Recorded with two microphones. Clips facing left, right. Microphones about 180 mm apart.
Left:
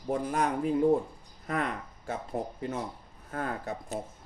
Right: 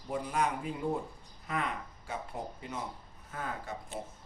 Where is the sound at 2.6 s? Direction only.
55° left (ahead or behind).